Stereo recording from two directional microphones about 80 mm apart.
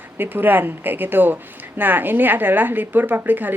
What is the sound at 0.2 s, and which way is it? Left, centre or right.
A woman's voice, right.